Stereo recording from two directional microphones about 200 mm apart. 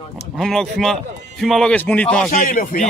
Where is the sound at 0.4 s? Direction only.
Centre (ahead or behind).